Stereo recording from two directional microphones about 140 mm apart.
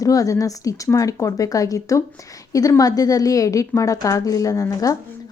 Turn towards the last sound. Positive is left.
turn(degrees=25)  # may be behind; listen again after turning